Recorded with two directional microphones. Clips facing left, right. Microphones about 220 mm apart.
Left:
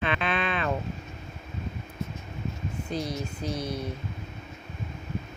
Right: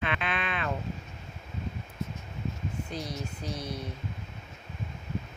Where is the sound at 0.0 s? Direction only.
35° left (ahead or behind).